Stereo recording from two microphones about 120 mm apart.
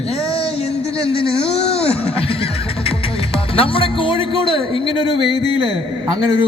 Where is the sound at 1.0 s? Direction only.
50° left (ahead or behind).